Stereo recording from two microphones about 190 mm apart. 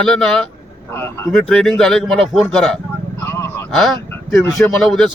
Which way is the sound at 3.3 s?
15° left (ahead or behind).